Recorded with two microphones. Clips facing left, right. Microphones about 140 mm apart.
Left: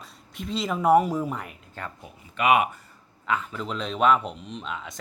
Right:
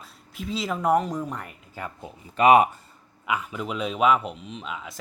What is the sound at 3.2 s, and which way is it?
Speech, 10° right (ahead or behind).